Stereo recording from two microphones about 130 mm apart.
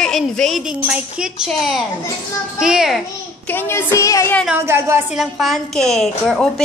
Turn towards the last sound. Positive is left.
turn(degrees=5)  # may be behind; listen again after turning